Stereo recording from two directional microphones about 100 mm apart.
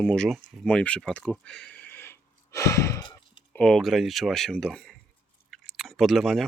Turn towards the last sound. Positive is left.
turn(degrees=0)  # may be behind; listen again after turning